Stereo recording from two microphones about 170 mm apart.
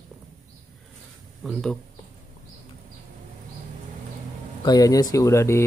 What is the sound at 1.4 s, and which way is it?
Speech, centre (ahead or behind).